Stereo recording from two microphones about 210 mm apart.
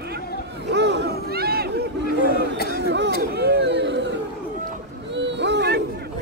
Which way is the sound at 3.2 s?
50° right (ahead or behind).